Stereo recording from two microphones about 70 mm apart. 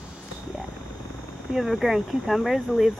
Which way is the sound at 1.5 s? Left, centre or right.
Centre.